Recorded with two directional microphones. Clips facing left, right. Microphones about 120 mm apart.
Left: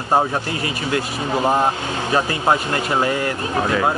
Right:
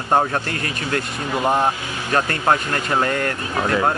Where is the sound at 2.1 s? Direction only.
10° left (ahead or behind).